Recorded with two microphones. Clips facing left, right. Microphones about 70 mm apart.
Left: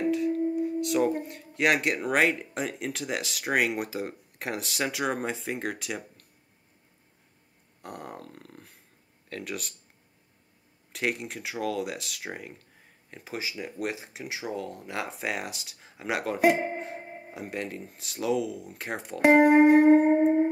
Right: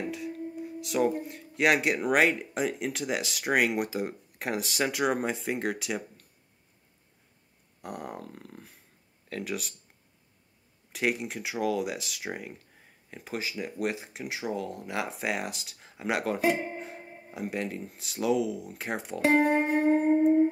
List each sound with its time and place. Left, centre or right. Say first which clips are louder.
0.0 s music: left 9 dB; centre
0.6 s speech: left 3 dB; centre
7.8 s speech: right 2 dB; centre
10.9 s speech: right 1 dB; centre
17.0 s music: left 4 dB; left
17.3 s speech: right 2 dB; centre
19.2 s music: left 6 dB; centre
19.7 s shofar: left 7 dB; left
20.1 s music: even; left